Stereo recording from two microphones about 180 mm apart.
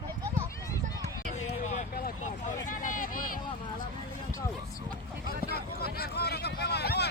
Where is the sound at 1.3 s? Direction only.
40° left (ahead or behind).